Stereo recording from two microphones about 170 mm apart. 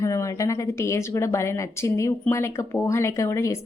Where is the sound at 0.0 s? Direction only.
15° left (ahead or behind).